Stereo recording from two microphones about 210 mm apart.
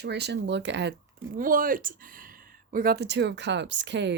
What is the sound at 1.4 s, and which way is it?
Speech, 40° right (ahead or behind).